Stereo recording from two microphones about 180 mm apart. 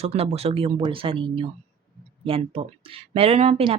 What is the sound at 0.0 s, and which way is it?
Speech, 35° right (ahead or behind).